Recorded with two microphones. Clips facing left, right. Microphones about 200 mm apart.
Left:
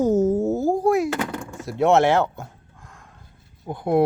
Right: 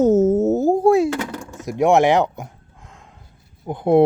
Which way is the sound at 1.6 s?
15° right (ahead or behind).